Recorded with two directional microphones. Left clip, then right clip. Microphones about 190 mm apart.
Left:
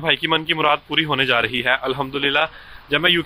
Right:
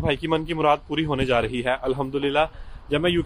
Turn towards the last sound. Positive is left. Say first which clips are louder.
# left 5 dB
turn(degrees=-5)  # may be behind; listen again after turning